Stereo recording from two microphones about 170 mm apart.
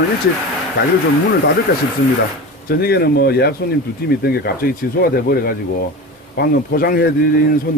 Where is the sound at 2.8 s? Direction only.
70° left (ahead or behind).